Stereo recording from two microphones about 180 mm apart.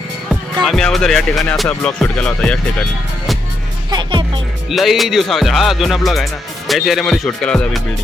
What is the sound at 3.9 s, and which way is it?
Speech, 25° right (ahead or behind).